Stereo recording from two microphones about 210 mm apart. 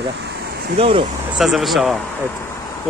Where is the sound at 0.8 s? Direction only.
25° right (ahead or behind).